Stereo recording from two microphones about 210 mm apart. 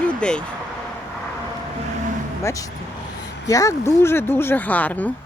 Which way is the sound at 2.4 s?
15° left (ahead or behind).